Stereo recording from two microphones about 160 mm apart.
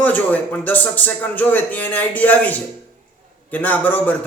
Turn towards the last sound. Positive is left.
turn(degrees=10)  # may be behind; listen again after turning